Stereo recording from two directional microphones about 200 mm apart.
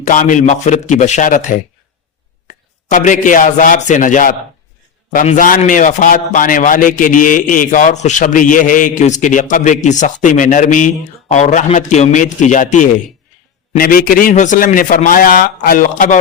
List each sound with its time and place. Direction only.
0.1 s a man's voice: 40° left (ahead or behind)
2.5 s a man's voice: 40° left (ahead or behind)